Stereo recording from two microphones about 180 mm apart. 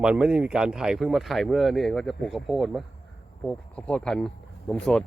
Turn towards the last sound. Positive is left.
turn(degrees=5)  # may be behind; listen again after turning